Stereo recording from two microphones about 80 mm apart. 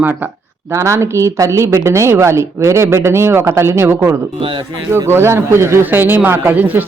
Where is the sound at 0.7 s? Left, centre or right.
Right.